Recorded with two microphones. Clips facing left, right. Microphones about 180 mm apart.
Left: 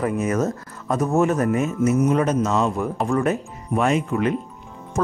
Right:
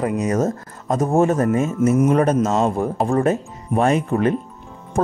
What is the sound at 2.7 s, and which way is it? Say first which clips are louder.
Speech: right 3 dB; 35° right (ahead or behind).